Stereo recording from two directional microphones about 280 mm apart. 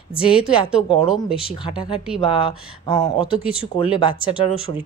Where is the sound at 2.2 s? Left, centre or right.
Centre.